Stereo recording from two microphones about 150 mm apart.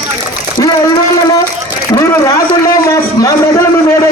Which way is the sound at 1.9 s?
25° left (ahead or behind).